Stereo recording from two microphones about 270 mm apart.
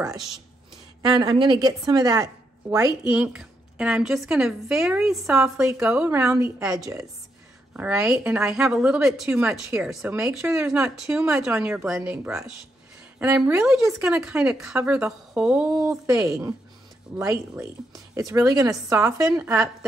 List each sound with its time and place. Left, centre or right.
1.0 s a woman's voice: centre